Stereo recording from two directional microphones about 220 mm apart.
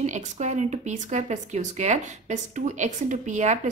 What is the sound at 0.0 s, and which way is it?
Speech, 35° right (ahead or behind).